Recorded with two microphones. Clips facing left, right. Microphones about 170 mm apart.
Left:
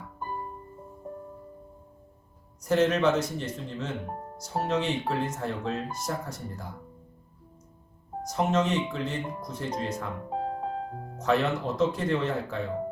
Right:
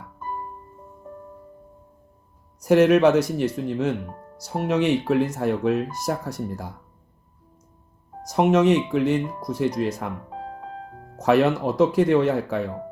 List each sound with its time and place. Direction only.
2.6 s speech: 75° right (ahead or behind)
8.3 s speech: 70° right (ahead or behind)
10.2 s music: 35° left (ahead or behind)
11.2 s speech: 75° right (ahead or behind)